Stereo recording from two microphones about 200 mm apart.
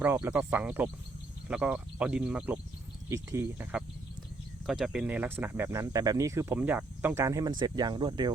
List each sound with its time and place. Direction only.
0.0 s speech: 10° right (ahead or behind)